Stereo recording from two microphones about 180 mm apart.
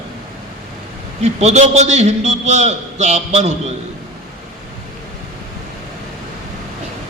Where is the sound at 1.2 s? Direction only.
40° right (ahead or behind).